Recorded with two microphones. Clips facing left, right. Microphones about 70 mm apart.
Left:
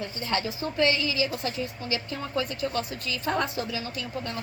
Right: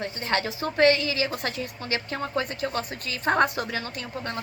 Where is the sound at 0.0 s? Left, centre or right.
Right.